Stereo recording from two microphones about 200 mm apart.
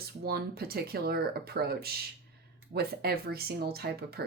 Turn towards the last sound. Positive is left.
turn(degrees=-50)  # may be behind; listen again after turning